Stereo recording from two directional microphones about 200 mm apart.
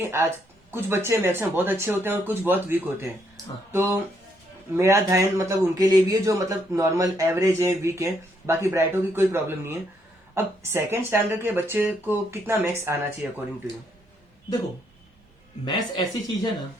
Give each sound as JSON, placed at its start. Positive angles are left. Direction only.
{"t": 0.0, "sound": "speech", "side_deg": -15}
{"t": 15.6, "sound": "speech", "side_deg": 20}